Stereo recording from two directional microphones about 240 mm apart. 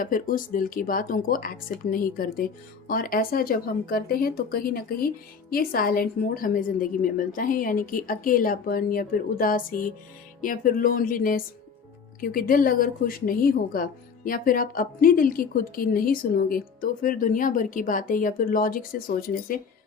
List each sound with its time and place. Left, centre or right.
0.0 s speech: left